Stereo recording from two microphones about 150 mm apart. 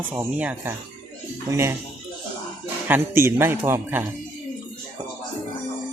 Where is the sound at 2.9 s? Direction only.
15° right (ahead or behind).